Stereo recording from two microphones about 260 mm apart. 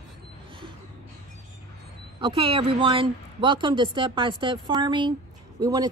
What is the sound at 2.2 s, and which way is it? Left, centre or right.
A woman's voice, centre.